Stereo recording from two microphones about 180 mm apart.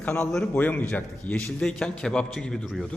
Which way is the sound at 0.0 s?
10° left (ahead or behind).